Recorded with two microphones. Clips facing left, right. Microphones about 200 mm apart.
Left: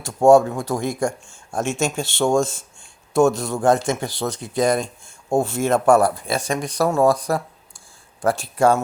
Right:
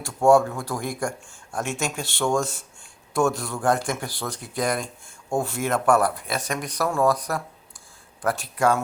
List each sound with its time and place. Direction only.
0.0 s speech: 25° left (ahead or behind)